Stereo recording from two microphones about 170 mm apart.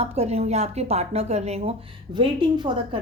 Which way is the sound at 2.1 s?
30° right (ahead or behind).